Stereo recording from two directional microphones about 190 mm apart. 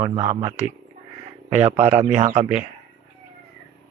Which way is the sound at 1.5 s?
35° right (ahead or behind).